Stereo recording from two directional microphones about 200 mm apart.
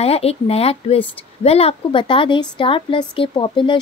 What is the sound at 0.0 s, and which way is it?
A woman's voice, 30° left (ahead or behind).